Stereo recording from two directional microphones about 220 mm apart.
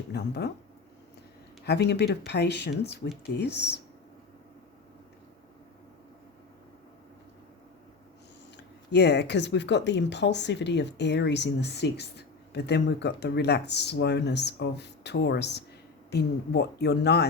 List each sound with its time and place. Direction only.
0.1 s speech: 50° left (ahead or behind)
1.6 s speech: 50° left (ahead or behind)
8.9 s speech: 50° left (ahead or behind)